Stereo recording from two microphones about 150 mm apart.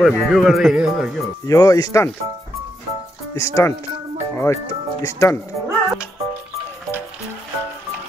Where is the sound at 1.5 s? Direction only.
25° left (ahead or behind).